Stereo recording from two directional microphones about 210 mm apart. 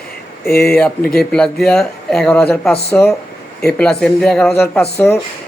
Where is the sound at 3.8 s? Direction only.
5° left (ahead or behind).